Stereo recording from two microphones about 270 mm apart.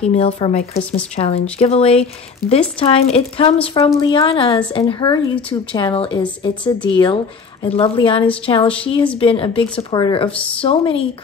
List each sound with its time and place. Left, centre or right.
0.0 s a woman's voice: left